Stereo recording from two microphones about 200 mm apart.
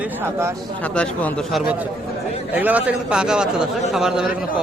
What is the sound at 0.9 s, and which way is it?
Speech, 5° left (ahead or behind).